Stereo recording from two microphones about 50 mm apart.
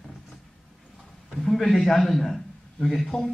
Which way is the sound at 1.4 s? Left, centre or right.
Centre.